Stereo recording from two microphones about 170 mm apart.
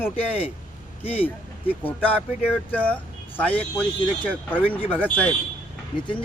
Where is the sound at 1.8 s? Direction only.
10° left (ahead or behind).